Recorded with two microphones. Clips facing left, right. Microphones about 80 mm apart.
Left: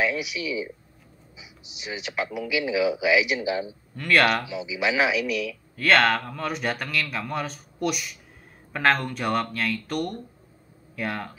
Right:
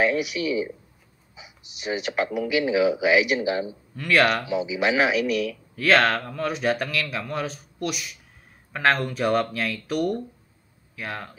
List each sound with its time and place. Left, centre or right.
0.1 s speech: right
3.9 s speech: centre
4.5 s speech: right
5.8 s speech: centre